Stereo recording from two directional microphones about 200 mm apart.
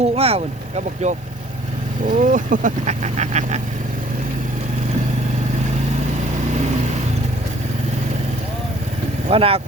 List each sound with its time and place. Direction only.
0.0 s speech: 30° right (ahead or behind)
9.3 s speech: 30° right (ahead or behind)